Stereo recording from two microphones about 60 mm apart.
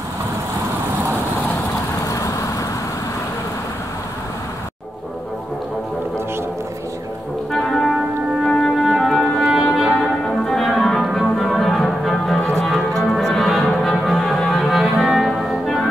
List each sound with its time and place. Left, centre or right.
2.0 s vehicle: left
7.5 s music: centre
11.3 s music: centre
12.4 s music: centre
12.6 s music: centre